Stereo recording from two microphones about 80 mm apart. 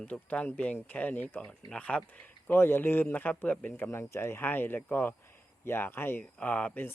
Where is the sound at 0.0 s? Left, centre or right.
Centre.